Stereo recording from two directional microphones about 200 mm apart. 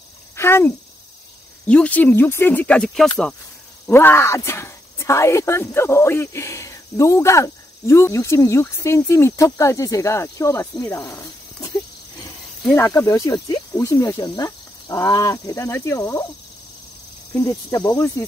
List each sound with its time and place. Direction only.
0.4 s speech: 10° left (ahead or behind)
12.7 s speech: 15° left (ahead or behind)